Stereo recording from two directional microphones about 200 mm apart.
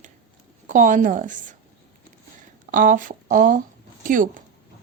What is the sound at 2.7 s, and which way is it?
Speech, 40° right (ahead or behind).